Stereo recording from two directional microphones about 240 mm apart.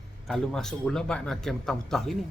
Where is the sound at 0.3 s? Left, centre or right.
Centre.